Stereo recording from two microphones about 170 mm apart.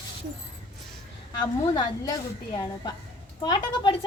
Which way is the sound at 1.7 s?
20° left (ahead or behind).